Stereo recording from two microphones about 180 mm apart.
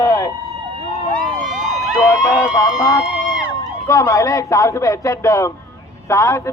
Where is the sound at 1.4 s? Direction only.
45° right (ahead or behind).